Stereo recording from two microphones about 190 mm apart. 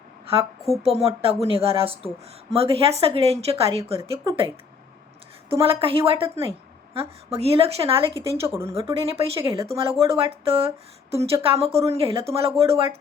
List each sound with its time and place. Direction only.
0.7 s a woman's voice: 30° right (ahead or behind)
5.5 s a woman's voice: 30° right (ahead or behind)
8.4 s speech: 15° right (ahead or behind)
8.7 s a woman's voice: 30° right (ahead or behind)